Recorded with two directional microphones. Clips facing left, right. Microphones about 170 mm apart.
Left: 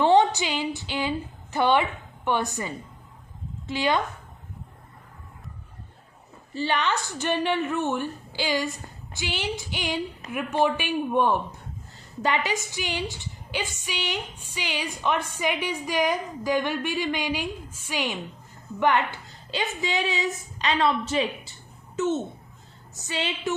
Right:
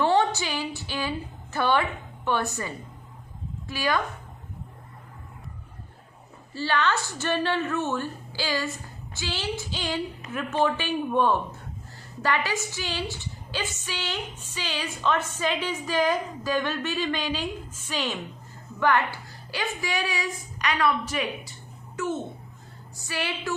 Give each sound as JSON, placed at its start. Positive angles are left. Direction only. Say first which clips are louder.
{"t": 0.0, "sound": "a sound", "louder": "left 3 dB", "side_deg": 15}
{"t": 1.5, "sound": "a woman's voice", "louder": "left 2 dB", "side_deg": 20}
{"t": 6.5, "sound": "a woman's voice", "louder": "even", "side_deg": 20}